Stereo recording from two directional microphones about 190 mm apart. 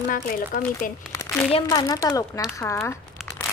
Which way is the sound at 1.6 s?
15° left (ahead or behind).